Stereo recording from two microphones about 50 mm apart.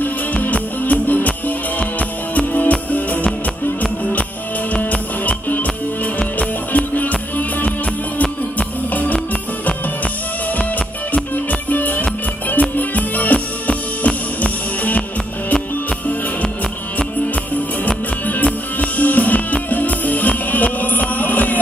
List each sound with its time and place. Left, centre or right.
0.0 s music: left
5.2 s music: left
11.7 s music: left
17.8 s music: left